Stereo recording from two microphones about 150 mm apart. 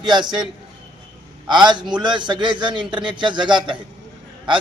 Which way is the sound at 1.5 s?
30° right (ahead or behind).